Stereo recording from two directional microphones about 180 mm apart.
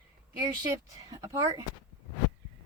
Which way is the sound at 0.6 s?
20° right (ahead or behind).